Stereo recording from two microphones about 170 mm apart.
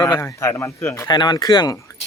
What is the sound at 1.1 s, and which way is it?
Speech, 25° left (ahead or behind).